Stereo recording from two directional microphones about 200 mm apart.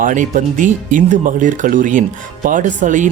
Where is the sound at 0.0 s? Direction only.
40° right (ahead or behind).